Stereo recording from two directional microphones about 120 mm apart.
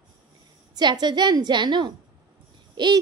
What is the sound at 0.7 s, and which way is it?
A woman's voice, 35° right (ahead or behind).